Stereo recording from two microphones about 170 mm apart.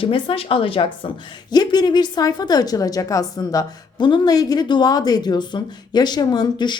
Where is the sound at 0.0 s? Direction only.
30° left (ahead or behind).